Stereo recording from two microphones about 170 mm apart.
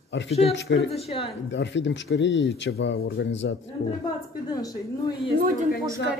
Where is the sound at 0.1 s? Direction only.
90° left.